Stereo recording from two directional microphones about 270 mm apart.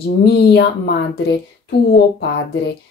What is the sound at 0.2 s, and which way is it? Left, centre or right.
Speech, left.